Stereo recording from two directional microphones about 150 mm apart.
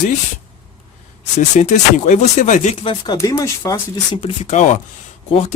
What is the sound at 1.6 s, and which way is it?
Speech, 55° left (ahead or behind).